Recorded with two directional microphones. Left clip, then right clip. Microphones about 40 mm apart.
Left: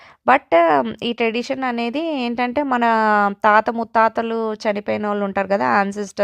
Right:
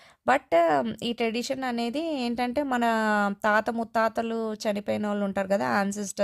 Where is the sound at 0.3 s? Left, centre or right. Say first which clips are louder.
Left 8 dB; left.